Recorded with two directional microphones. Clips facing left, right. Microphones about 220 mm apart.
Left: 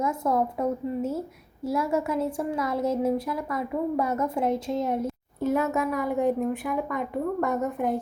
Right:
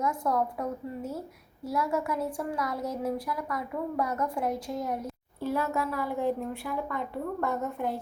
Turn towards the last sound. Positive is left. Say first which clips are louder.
# left 5 dB
turn(degrees=20)  # may be behind; listen again after turning